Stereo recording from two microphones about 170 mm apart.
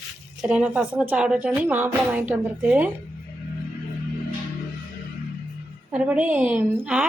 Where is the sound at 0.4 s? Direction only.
5° right (ahead or behind).